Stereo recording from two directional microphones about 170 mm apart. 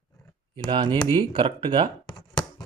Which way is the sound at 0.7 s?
25° right (ahead or behind).